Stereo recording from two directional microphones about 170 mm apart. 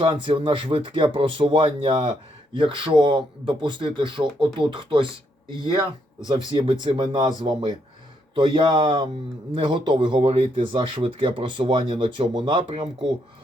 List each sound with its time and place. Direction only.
0.0 s speech: 30° right (ahead or behind)